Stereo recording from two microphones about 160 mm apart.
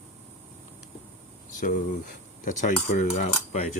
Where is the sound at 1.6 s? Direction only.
55° left (ahead or behind).